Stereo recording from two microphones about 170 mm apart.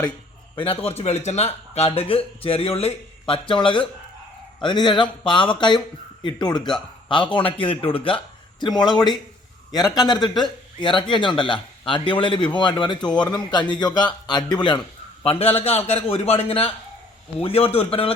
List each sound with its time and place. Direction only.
0.5 s speech: 35° left (ahead or behind)